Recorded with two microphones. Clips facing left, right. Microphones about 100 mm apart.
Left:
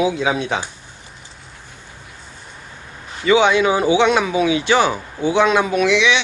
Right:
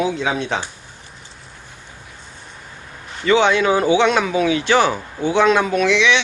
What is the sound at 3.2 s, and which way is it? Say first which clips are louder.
Speech: left 1 dB; 10° left (ahead or behind).